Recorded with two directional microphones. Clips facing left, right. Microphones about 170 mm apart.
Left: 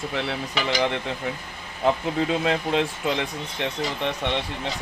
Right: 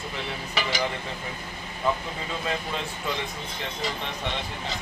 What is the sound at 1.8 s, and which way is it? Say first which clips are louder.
Speech: left 6 dB; 75° left (ahead or behind).